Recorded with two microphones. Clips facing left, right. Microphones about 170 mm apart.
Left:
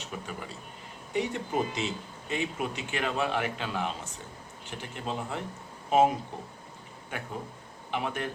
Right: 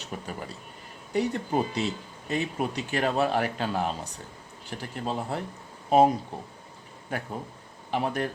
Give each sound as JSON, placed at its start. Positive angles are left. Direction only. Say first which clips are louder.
{"t": 0.0, "sound": "a man's voice", "louder": "right 2 dB", "side_deg": -40}